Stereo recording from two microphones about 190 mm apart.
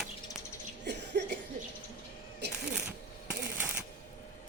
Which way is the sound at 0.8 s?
65° right (ahead or behind).